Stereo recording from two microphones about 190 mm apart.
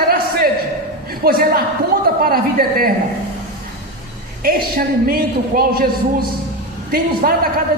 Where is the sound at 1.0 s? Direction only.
50° right (ahead or behind).